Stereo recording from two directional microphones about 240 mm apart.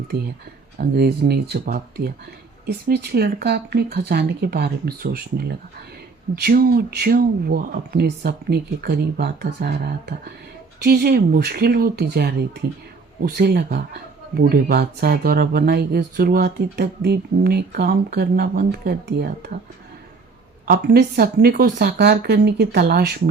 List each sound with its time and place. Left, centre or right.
0.8 s speech: right
20.7 s speech: right